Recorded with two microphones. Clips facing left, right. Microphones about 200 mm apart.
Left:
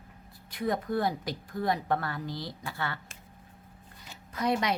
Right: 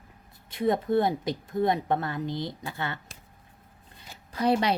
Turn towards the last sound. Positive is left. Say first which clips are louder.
# right 4 dB
turn(degrees=-30)  # may be behind; listen again after turning